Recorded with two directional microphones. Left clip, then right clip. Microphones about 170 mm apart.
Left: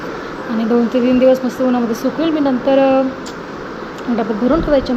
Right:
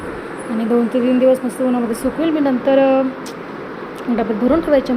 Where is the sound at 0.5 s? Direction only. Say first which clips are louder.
Left 2 dB; 5° right (ahead or behind).